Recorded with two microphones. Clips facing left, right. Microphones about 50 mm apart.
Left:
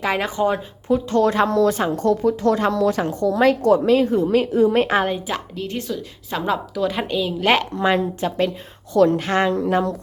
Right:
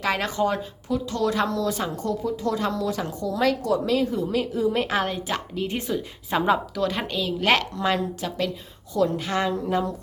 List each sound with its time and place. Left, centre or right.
0.0 s speech: centre
0.9 s speech: left
2.0 s speech: left
2.6 s a woman's voice: left
5.5 s a woman's voice: centre
6.7 s speech: centre
7.6 s speech: left
8.9 s a woman's voice: left
9.5 s speech: left